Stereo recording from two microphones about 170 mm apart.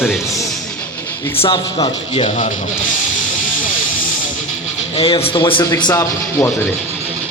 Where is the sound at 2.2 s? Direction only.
45° left (ahead or behind).